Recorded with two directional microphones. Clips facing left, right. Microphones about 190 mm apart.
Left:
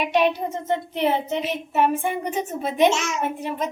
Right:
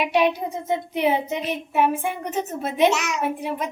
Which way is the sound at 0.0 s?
10° right (ahead or behind).